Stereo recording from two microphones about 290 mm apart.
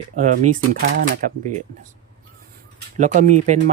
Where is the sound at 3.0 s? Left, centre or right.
Right.